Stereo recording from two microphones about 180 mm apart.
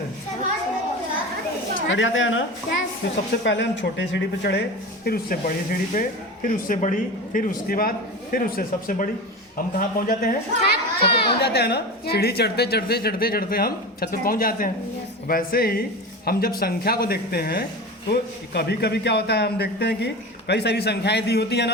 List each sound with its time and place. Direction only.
1.9 s speech: 90° left
2.6 s a man's voice: 70° left (ahead or behind)
5.0 s a man's voice: 55° left (ahead or behind)